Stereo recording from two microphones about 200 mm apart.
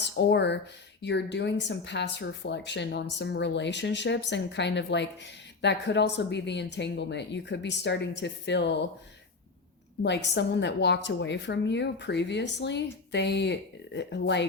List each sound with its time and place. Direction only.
0.0 s speech: 60° left (ahead or behind)
10.0 s speech: 60° left (ahead or behind)